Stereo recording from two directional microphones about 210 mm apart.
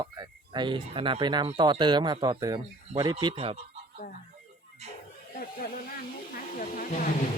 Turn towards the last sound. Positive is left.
turn(degrees=40)  # may be behind; listen again after turning